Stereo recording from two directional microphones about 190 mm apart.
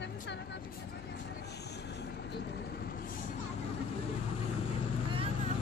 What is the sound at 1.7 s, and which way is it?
Vehicle, 60° left (ahead or behind).